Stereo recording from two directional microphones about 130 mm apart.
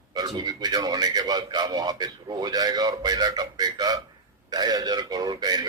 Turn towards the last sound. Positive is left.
turn(degrees=-30)  # may be behind; listen again after turning